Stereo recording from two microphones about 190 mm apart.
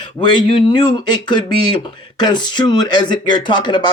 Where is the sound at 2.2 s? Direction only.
20° left (ahead or behind).